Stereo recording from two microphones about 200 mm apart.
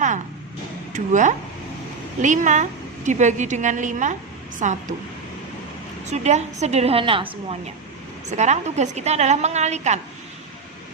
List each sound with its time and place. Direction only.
0.9 s a woman's voice: 40° right (ahead or behind)
6.1 s a woman's voice: 35° right (ahead or behind)